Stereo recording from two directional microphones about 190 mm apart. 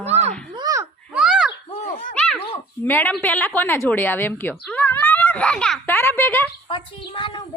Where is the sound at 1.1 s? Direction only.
5° right (ahead or behind).